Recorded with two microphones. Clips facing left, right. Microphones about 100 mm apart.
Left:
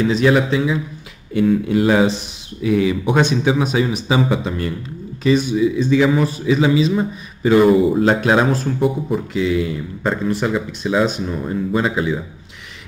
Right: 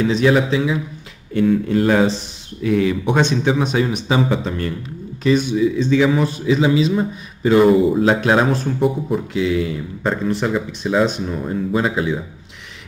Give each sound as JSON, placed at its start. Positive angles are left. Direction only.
{"t": 0.0, "sound": "speech", "side_deg": 0}